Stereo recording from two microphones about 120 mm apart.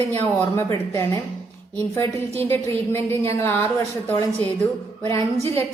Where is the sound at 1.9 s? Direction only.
20° left (ahead or behind).